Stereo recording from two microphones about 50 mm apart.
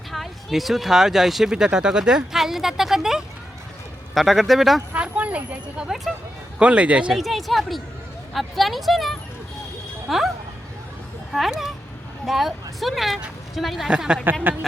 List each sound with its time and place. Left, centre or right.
0.1 s speech: centre
4.9 s speech: right
7.1 s speech: centre
13.8 s speech: centre